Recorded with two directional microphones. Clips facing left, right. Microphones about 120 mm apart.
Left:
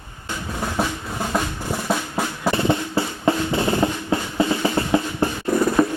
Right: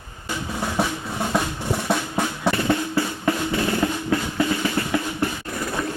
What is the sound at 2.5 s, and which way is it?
Music, 25° left (ahead or behind).